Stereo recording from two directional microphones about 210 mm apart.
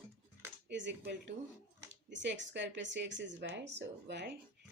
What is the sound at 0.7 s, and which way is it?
Speech, 60° right (ahead or behind).